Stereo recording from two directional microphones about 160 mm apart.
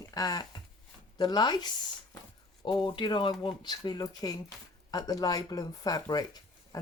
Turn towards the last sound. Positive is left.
turn(degrees=25)  # may be behind; listen again after turning